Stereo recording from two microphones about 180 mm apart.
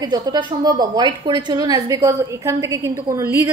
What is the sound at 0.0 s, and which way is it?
A woman's voice, 20° right (ahead or behind).